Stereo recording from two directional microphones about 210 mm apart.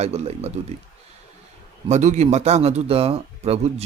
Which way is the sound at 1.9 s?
35° right (ahead or behind).